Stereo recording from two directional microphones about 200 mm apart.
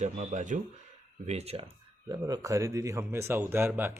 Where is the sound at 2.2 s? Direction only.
15° right (ahead or behind).